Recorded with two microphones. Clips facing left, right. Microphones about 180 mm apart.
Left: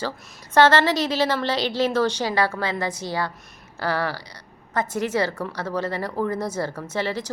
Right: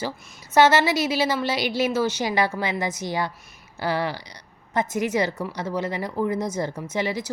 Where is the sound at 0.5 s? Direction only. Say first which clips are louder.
Left 1 dB; 10° right (ahead or behind).